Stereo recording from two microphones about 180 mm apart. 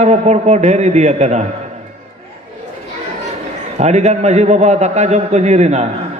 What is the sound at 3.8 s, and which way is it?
A man's voice, 40° right (ahead or behind).